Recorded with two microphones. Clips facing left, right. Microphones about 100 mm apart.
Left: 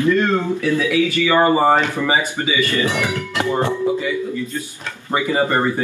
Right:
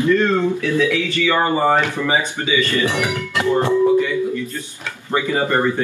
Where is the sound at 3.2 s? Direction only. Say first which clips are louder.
Right 2 dB; 20° left (ahead or behind).